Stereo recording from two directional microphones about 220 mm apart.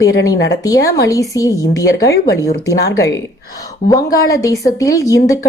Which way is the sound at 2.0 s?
50° left (ahead or behind).